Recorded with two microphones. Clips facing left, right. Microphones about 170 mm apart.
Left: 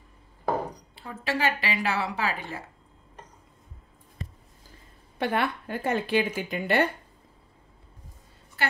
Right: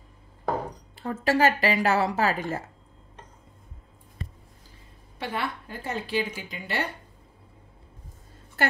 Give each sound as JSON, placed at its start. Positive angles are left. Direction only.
{"t": 0.9, "sound": "a woman's voice", "side_deg": -45}
{"t": 5.2, "sound": "speech", "side_deg": 55}
{"t": 8.6, "sound": "a sound", "side_deg": -45}